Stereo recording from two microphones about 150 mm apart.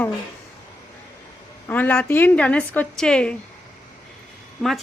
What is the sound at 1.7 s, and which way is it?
Speech, 10° left (ahead or behind).